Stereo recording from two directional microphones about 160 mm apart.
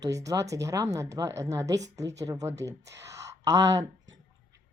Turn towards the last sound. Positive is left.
turn(degrees=-20)  # may be behind; listen again after turning